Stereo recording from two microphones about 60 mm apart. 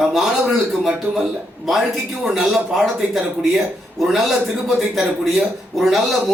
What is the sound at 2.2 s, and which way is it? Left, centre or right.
Speech, centre.